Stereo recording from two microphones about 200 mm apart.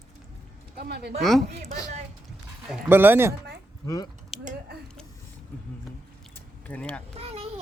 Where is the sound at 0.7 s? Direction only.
55° right (ahead or behind).